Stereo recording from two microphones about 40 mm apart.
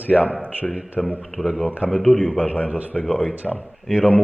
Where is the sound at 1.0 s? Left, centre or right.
Centre.